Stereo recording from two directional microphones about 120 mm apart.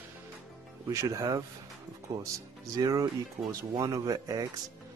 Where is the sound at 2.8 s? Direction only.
30° right (ahead or behind).